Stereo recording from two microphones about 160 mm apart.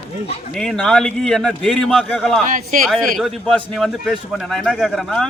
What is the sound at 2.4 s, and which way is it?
Speech, 55° right (ahead or behind).